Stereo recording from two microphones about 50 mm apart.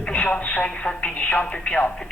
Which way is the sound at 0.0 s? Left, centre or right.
Left.